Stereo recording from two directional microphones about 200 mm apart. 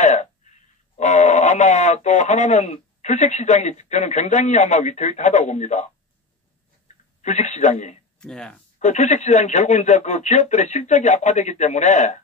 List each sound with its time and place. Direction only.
0.0 s a man's voice: 35° left (ahead or behind)
7.2 s speech: 35° left (ahead or behind)
8.2 s speech: 5° left (ahead or behind)
8.7 s speech: 35° left (ahead or behind)